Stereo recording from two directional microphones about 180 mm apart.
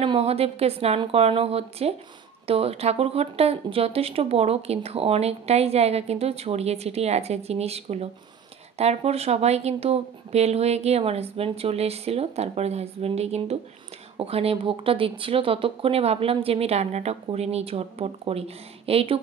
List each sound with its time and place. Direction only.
0.0 s speech: 30° right (ahead or behind)